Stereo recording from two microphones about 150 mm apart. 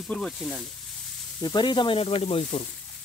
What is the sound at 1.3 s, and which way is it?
Speech, 25° left (ahead or behind).